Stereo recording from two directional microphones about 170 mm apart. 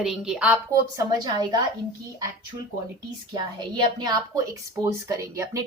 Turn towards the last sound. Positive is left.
turn(degrees=-20)  # may be behind; listen again after turning